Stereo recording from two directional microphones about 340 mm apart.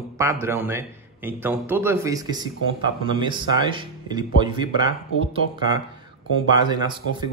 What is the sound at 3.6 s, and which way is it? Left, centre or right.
Speech, centre.